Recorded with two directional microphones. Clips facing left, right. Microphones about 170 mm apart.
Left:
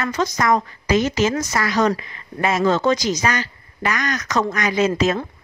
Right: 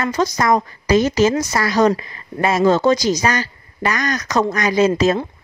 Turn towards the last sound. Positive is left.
turn(degrees=-35)  # may be behind; listen again after turning